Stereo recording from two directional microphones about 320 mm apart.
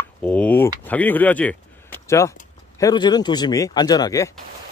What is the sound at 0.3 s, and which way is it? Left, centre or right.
Speech, centre.